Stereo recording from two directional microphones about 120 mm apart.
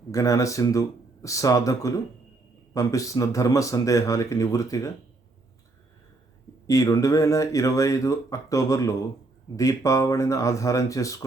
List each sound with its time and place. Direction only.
0.1 s speech: 25° left (ahead or behind)
6.7 s speech: 25° left (ahead or behind)